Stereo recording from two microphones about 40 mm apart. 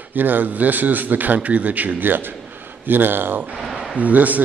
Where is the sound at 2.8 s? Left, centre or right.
Right.